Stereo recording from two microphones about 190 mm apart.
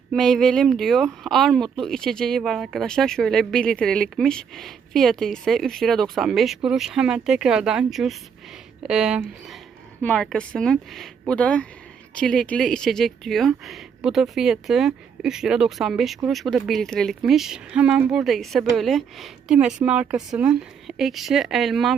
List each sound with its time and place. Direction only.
0.1 s speech: centre (ahead or behind)